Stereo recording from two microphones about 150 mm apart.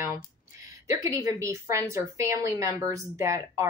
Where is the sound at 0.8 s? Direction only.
20° right (ahead or behind).